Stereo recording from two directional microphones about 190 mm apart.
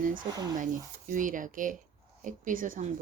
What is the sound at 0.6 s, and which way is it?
Speech, 45° right (ahead or behind).